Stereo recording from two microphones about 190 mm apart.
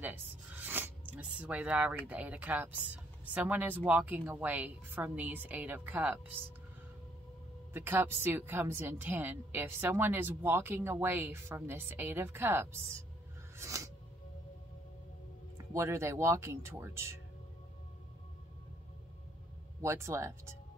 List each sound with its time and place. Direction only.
0.0 s speech: 10° right (ahead or behind)
7.7 s speech: 10° right (ahead or behind)
13.6 s music: 15° right (ahead or behind)
15.5 s speech: 15° right (ahead or behind)
19.8 s speech: 15° right (ahead or behind)